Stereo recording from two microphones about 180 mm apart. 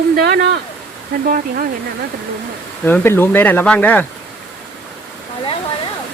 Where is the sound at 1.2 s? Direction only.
50° right (ahead or behind).